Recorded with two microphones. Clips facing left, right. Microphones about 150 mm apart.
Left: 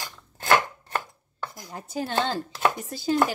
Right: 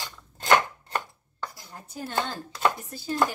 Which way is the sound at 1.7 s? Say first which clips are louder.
Left 7 dB; 90° left.